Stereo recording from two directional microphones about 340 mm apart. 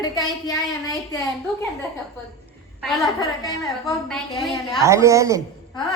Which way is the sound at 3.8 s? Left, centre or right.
Centre.